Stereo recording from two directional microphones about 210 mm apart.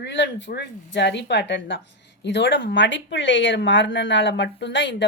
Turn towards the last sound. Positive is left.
turn(degrees=55)  # may be behind; listen again after turning